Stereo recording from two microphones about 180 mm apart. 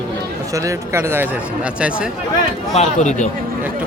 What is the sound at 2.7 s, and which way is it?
Speech, 40° left (ahead or behind).